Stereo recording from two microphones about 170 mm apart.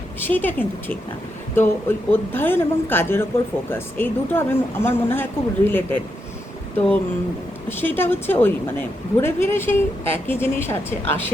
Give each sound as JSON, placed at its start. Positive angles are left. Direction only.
{"t": 0.3, "sound": "speech", "side_deg": 10}